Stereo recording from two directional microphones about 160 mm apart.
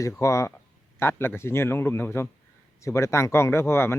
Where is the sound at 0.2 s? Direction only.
20° left (ahead or behind).